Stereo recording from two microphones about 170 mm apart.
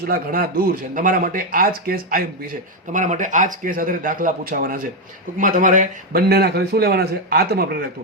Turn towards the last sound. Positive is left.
turn(degrees=-65)  # may be behind; listen again after turning